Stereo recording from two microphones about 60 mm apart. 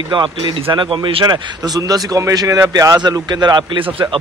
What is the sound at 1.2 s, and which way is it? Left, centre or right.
Speech, right.